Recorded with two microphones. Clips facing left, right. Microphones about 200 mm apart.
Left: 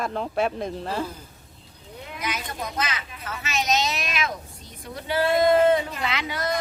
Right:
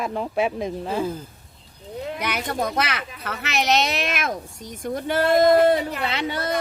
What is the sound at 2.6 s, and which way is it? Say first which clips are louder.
Speech: right 4 dB; 65° right (ahead or behind).